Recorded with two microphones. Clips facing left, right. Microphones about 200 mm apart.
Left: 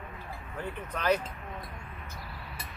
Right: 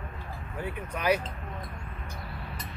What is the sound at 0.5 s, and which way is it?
Speech, 10° right (ahead or behind).